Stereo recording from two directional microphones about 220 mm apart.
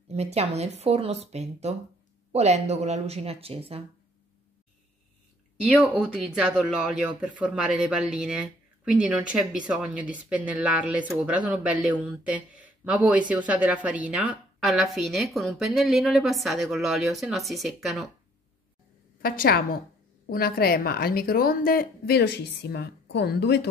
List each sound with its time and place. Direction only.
0.1 s speech: 30° right (ahead or behind)
5.6 s speech: 5° right (ahead or behind)
19.2 s a woman's voice: 40° left (ahead or behind)